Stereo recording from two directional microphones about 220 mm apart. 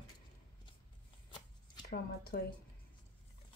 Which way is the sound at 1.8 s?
45° left (ahead or behind).